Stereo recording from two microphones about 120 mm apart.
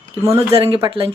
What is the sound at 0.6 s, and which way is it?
Speech, 45° right (ahead or behind).